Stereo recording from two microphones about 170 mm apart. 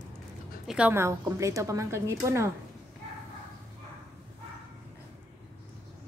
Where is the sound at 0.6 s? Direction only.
5° right (ahead or behind).